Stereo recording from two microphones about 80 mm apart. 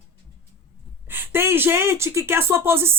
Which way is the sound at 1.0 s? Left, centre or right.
Right.